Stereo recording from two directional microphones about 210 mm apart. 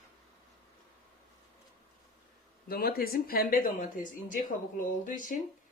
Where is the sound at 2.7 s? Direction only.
45° left (ahead or behind).